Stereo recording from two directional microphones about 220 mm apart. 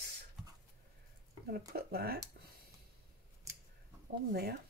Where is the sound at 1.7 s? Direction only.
45° right (ahead or behind).